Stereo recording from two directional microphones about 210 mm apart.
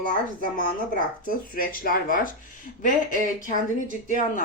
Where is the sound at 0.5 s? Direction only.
40° left (ahead or behind).